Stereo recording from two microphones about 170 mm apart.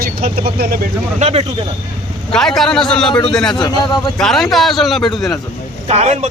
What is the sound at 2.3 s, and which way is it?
Speech, centre (ahead or behind).